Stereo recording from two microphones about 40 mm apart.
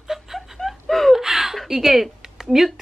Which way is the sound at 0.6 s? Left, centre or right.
Centre.